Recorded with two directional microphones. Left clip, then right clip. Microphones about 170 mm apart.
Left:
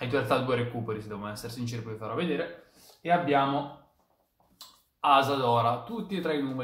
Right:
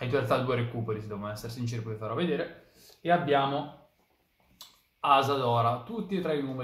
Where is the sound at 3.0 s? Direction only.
15° right (ahead or behind).